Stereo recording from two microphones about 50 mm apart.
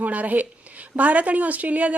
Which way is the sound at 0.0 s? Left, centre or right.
Right.